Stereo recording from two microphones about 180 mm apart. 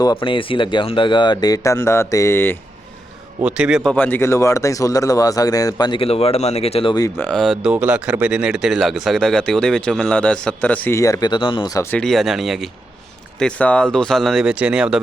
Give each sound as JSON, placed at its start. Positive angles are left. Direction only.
{"t": 0.0, "sound": "speech", "side_deg": 25}
{"t": 3.4, "sound": "speech", "side_deg": -5}
{"t": 7.2, "sound": "speech", "side_deg": 5}
{"t": 11.9, "sound": "speech", "side_deg": 0}